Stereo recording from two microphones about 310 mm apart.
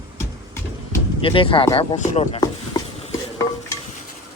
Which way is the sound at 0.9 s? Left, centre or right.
Centre.